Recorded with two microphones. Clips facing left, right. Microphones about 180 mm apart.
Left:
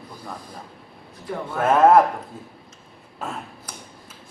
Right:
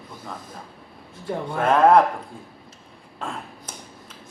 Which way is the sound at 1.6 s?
5° left (ahead or behind).